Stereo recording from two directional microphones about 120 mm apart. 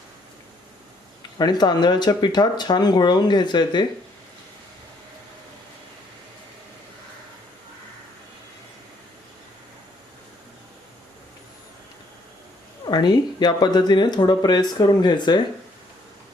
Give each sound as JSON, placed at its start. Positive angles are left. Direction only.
{"t": 1.4, "sound": "speech", "side_deg": 35}
{"t": 12.8, "sound": "speech", "side_deg": 35}